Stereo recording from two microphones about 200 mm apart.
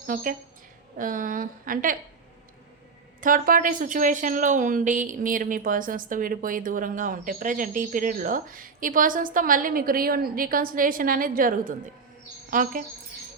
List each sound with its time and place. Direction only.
0.1 s speech: 45° right (ahead or behind)
3.2 s a woman's voice: 45° right (ahead or behind)